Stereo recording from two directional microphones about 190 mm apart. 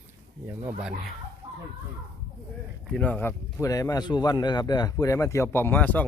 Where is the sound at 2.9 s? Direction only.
10° left (ahead or behind).